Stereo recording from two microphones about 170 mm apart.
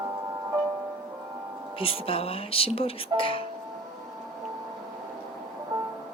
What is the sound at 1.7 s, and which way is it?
Speech, 35° left (ahead or behind).